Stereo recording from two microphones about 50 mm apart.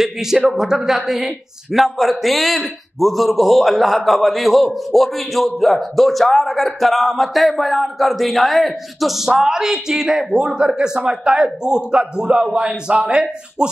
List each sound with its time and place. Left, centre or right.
0.0 s a man's voice: centre